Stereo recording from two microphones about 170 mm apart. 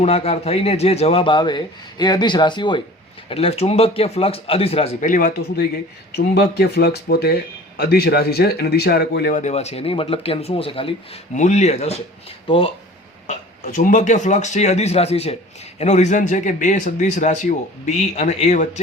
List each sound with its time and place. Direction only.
0.0 s a man's voice: 35° left (ahead or behind); by 5.6 s 60° left (ahead or behind)
6.1 s speech: 75° left (ahead or behind)
9.3 s speech: 40° left (ahead or behind)
11.3 s speech: 45° left (ahead or behind)
13.2 s a man's voice: 45° left (ahead or behind)